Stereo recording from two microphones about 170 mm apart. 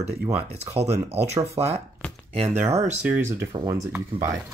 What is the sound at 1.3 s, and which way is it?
Speech, 15° right (ahead or behind).